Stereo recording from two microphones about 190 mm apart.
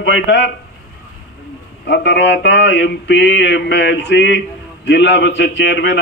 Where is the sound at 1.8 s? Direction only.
65° left (ahead or behind).